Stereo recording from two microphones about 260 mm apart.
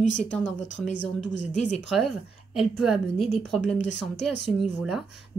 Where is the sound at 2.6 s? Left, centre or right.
Centre.